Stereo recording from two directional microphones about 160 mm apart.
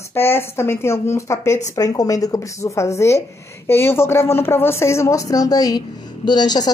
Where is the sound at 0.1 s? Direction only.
15° left (ahead or behind).